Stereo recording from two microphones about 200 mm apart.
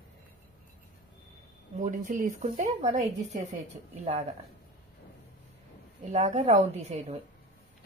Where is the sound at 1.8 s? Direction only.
40° right (ahead or behind).